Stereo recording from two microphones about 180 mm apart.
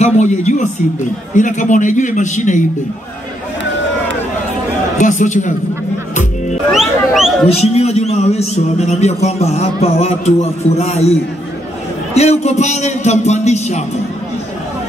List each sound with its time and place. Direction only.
0.0 s a man's voice: 40° left (ahead or behind)
4.9 s a man's voice: 45° left (ahead or behind)
6.7 s music: centre (ahead or behind)
7.4 s a man's voice: 35° left (ahead or behind)